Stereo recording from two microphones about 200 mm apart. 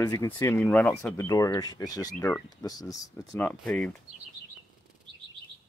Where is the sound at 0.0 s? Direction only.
15° left (ahead or behind).